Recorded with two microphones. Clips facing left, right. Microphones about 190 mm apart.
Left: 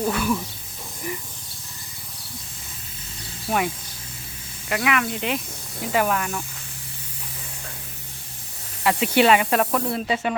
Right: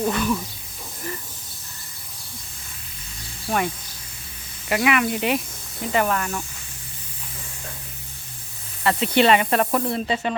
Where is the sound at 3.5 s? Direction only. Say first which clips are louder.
Even; 5° left (ahead or behind).